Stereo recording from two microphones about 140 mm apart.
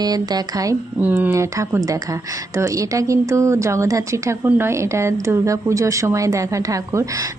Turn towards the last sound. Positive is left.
turn(degrees=-25)  # may be behind; listen again after turning